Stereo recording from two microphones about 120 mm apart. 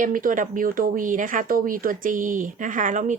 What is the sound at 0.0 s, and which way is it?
A woman's voice, 90° right.